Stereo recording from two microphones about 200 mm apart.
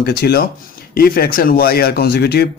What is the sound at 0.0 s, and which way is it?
Speech, 50° left (ahead or behind).